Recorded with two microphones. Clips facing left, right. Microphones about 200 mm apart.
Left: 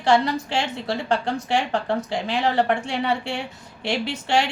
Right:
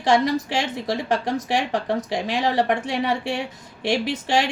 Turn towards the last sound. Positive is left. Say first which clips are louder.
# right 1 dB
turn(degrees=-20)  # may be behind; listen again after turning